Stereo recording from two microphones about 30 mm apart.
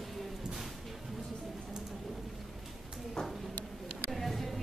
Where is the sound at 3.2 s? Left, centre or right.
Left.